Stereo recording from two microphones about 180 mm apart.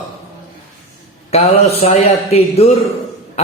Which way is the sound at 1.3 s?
35° left (ahead or behind).